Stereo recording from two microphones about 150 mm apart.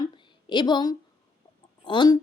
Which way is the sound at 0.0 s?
30° left (ahead or behind).